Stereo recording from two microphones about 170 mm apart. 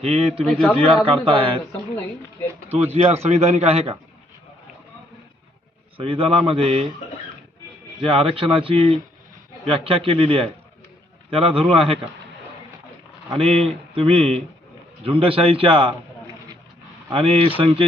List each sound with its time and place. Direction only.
0.0 s speech: 35° right (ahead or behind)
0.4 s a man's voice: 5° left (ahead or behind)
0.8 s speech: 30° right (ahead or behind)
2.9 s speech: 35° right (ahead or behind)
6.0 s speech: 30° right (ahead or behind)
8.0 s speech: 30° right (ahead or behind)
13.3 s speech: 35° right (ahead or behind)
17.1 s speech: 35° right (ahead or behind)